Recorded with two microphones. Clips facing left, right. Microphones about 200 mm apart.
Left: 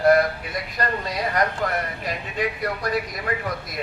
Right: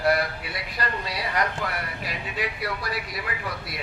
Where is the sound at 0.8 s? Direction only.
45° left (ahead or behind).